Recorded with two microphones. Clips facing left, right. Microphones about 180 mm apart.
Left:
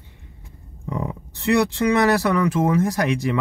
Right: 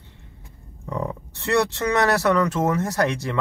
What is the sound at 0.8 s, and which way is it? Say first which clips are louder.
Speech: even; 15° left (ahead or behind).